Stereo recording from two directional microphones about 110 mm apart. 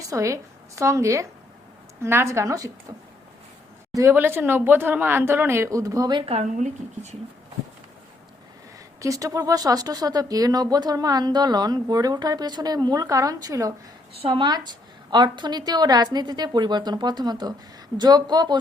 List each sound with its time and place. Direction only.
0.1 s speech: 30° right (ahead or behind)
3.9 s speech: 25° right (ahead or behind)
6.1 s speech: 70° right (ahead or behind); by 7.2 s 90° right
9.0 s speech: 30° right (ahead or behind)
14.2 s a woman's voice: 50° right (ahead or behind)